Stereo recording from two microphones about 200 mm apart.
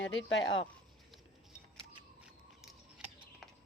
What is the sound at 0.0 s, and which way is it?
Speech, 65° left (ahead or behind).